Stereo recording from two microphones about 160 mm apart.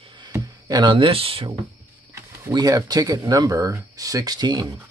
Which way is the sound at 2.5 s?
25° right (ahead or behind).